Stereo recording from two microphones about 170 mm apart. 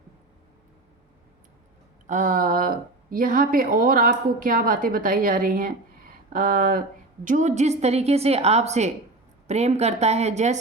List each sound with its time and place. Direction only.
2.0 s a woman's voice: 50° right (ahead or behind)